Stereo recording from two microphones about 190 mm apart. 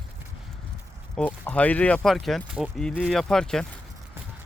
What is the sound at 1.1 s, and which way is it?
Speech, 10° left (ahead or behind).